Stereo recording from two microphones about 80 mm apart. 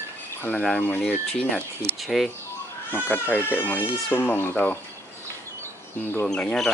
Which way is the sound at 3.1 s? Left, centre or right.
Left.